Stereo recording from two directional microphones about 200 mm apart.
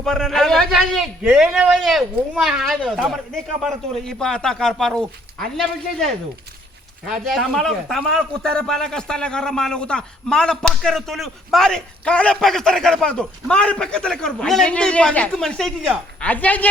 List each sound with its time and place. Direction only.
0.0 s a man's voice: centre (ahead or behind)
7.1 s a man's voice: centre (ahead or behind)